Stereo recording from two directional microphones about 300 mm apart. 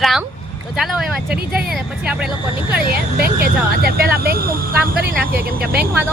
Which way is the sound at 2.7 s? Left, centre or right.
Right.